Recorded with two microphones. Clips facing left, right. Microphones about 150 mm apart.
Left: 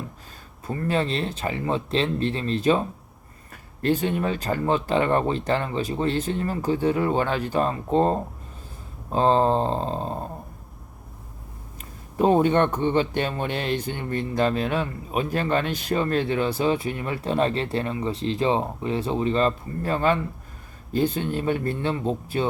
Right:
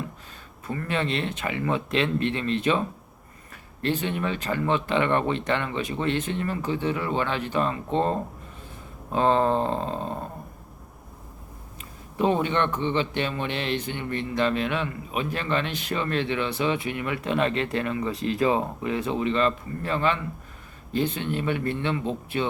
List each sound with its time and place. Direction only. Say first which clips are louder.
0.7 s a man's voice: left 3 dB; 35° left (ahead or behind)
11.8 s a man's voice: left 3 dB; 45° left (ahead or behind)